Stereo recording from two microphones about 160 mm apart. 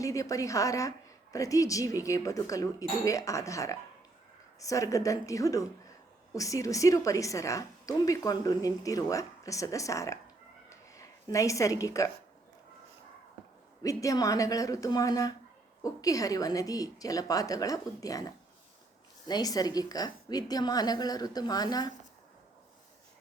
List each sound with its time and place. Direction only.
0.0 s a woman's voice: 20° left (ahead or behind)
10.7 s a sound: 20° left (ahead or behind)
13.8 s a woman's voice: 20° left (ahead or behind)